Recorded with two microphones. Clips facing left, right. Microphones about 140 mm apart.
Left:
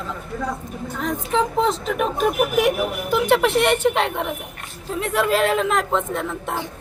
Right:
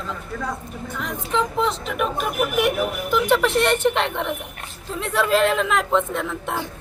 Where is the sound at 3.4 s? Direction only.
15° left (ahead or behind).